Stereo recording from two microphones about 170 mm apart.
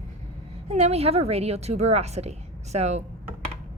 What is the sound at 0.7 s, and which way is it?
A woman's voice, 40° right (ahead or behind).